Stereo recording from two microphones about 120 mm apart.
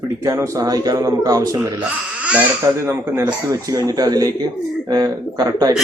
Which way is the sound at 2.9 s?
25° right (ahead or behind).